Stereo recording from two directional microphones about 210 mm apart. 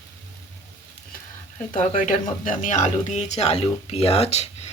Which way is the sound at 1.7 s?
35° left (ahead or behind).